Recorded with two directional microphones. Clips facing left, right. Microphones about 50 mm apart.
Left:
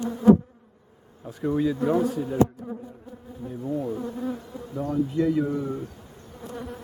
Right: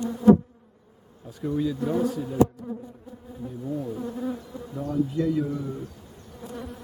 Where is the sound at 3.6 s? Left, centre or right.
Centre.